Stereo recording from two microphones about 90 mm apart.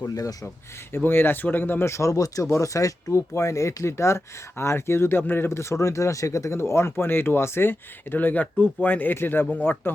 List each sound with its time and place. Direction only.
0.1 s speech: 40° left (ahead or behind)
0.9 s speech: 25° left (ahead or behind)